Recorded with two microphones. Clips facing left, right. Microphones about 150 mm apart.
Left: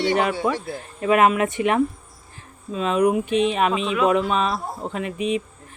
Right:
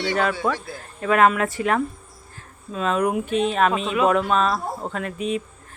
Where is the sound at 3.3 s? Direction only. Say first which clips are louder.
Left 2 dB; 40° right (ahead or behind).